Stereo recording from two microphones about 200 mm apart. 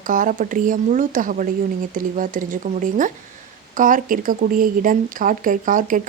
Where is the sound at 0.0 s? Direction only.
40° right (ahead or behind).